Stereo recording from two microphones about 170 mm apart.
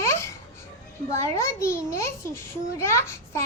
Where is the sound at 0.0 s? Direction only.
15° left (ahead or behind).